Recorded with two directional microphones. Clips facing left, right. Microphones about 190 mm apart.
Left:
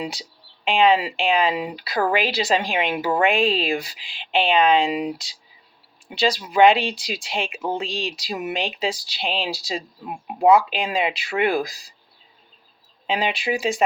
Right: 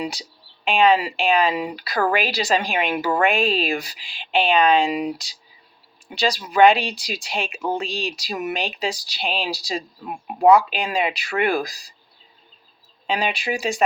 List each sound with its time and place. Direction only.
0.0 s speech: 25° left (ahead or behind)
13.1 s speech: 20° left (ahead or behind)